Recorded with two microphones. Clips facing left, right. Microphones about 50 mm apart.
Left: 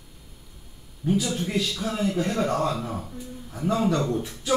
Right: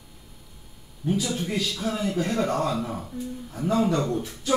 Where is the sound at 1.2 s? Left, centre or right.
Centre.